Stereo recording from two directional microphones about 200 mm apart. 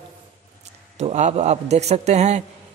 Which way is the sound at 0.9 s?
35° right (ahead or behind).